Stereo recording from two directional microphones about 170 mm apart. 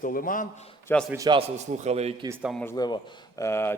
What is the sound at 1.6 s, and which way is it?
Speech, 40° right (ahead or behind).